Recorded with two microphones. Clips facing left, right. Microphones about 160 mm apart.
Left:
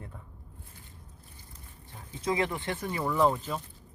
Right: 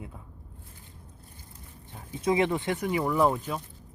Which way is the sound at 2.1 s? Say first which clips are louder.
Right 5 dB; 20° right (ahead or behind).